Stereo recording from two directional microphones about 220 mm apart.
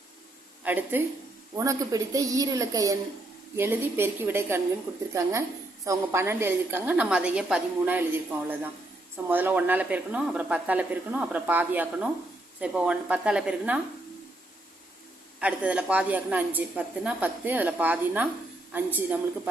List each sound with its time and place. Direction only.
0.6 s a woman's voice: 10° right (ahead or behind)
9.3 s a woman's voice: 10° right (ahead or behind)
15.4 s a woman's voice: 5° right (ahead or behind)